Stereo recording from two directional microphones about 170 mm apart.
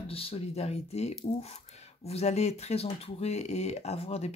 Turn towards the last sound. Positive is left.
turn(degrees=40)  # may be behind; listen again after turning